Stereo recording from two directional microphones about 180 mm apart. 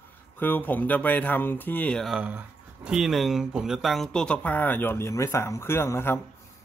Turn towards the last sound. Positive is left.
turn(degrees=15)  # may be behind; listen again after turning